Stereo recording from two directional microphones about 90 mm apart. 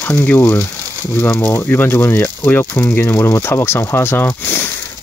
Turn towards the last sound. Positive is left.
turn(degrees=25)  # may be behind; listen again after turning